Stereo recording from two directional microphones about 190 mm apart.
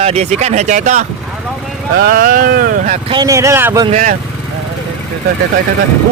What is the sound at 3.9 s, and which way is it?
Speech, 40° right (ahead or behind).